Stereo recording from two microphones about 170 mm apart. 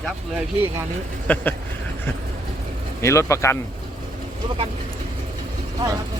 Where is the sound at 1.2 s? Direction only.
10° left (ahead or behind).